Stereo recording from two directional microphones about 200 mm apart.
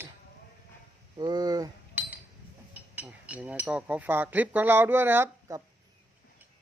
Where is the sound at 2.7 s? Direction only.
5° right (ahead or behind).